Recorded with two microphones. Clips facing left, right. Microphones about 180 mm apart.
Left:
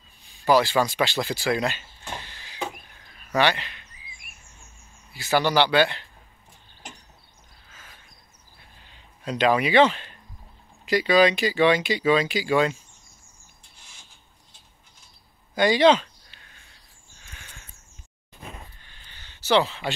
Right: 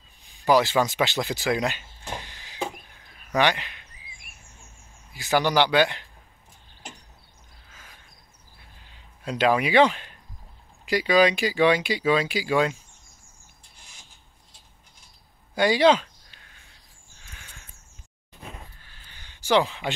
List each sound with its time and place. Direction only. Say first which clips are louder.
0.2 s speech: even; 20° right (ahead or behind)
1.5 s a sound: even; 15° right (ahead or behind)
3.3 s speech: even; 15° right (ahead or behind)
5.1 s speech: even; 15° right (ahead or behind)
9.2 s speech: left 1 dB; 10° right (ahead or behind)
15.5 s speech: left 1 dB; 10° right (ahead or behind)
18.8 s a sound: even; 5° right (ahead or behind)